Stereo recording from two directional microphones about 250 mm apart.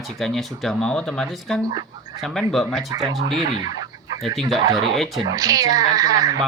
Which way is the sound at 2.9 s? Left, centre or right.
Centre.